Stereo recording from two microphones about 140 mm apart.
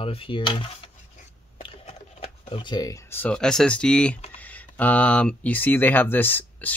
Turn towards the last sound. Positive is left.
turn(degrees=15)  # may be behind; listen again after turning